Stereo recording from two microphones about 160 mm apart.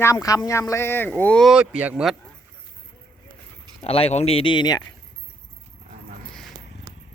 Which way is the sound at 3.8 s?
40° left (ahead or behind).